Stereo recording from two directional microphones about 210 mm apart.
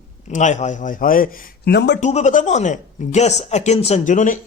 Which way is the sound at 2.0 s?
35° left (ahead or behind).